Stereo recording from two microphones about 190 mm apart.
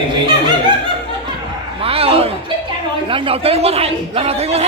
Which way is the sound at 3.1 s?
30° right (ahead or behind).